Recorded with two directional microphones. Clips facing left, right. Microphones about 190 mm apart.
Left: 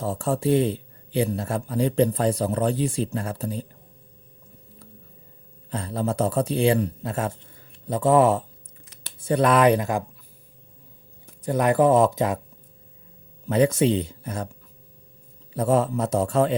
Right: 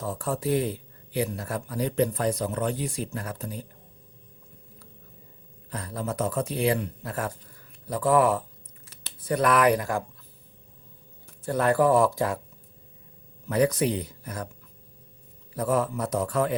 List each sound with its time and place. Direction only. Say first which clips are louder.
0.0 s speech: left 5 dB; 30° left (ahead or behind)
5.7 s speech: left 5 dB; 30° left (ahead or behind)
11.4 s speech: left 3 dB; 20° left (ahead or behind)
13.5 s speech: left 4 dB; 25° left (ahead or behind)
15.5 s speech: left 4 dB; 25° left (ahead or behind)